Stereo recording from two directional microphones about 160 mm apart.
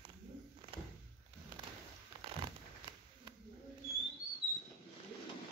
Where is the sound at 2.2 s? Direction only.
35° right (ahead or behind).